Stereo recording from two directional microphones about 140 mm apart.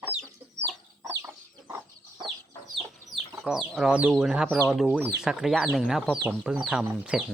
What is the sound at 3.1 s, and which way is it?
Chicken, centre (ahead or behind).